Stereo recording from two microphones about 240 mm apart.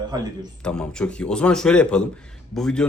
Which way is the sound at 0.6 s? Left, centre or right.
Centre.